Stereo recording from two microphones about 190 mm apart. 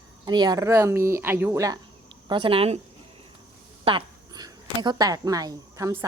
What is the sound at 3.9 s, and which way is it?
Speech, 25° right (ahead or behind).